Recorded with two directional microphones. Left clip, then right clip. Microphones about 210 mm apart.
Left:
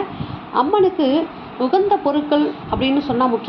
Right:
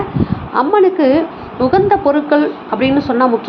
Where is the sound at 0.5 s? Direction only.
15° right (ahead or behind).